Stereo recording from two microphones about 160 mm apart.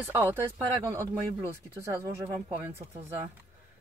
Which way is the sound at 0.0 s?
10° right (ahead or behind).